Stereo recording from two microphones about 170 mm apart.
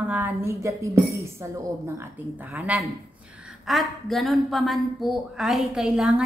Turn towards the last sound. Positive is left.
turn(degrees=-5)  # may be behind; listen again after turning